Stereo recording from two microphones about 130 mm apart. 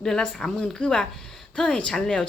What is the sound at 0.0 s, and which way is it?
Speech, 5° left (ahead or behind).